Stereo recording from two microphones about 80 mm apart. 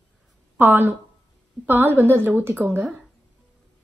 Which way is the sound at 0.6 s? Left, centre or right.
Right.